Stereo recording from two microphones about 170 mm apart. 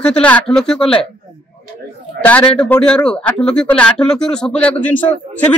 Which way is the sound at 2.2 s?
10° left (ahead or behind).